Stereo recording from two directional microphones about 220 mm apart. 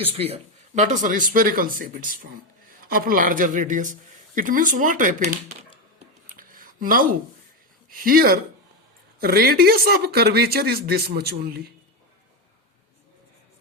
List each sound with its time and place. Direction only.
0.0 s a man's voice: 25° right (ahead or behind)
6.3 s a sound: 40° right (ahead or behind)
7.9 s a man's voice: 40° right (ahead or behind)